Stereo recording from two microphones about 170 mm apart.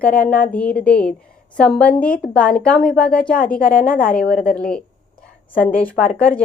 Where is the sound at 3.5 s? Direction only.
55° left (ahead or behind).